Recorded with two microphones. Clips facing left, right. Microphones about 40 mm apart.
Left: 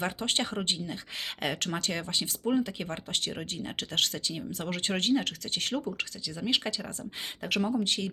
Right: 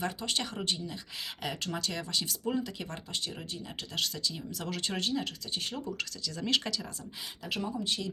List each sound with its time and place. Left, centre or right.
0.0 s speech: left
1.7 s speech: left
3.1 s speech: left
6.2 s speech: centre
7.4 s speech: left
7.9 s speech: left